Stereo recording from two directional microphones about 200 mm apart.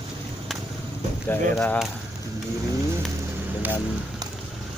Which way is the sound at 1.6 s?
5° left (ahead or behind).